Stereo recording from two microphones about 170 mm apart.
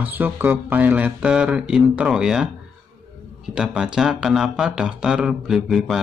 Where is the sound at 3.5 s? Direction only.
5° right (ahead or behind).